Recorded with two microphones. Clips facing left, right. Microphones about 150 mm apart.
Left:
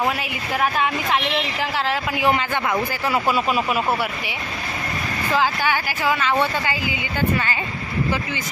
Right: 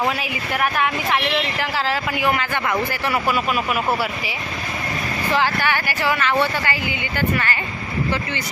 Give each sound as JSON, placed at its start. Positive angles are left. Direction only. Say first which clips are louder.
{"t": 3.1, "sound": "speech", "louder": "left 2 dB", "side_deg": 25}
{"t": 5.3, "sound": "speech", "louder": "even", "side_deg": 10}